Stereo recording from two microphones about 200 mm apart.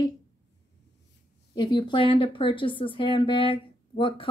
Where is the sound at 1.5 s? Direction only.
20° left (ahead or behind).